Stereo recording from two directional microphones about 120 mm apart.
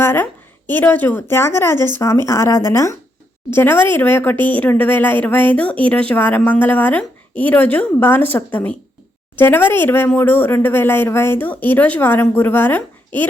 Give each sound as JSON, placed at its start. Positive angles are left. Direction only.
{"t": 0.0, "sound": "a woman's voice", "side_deg": 20}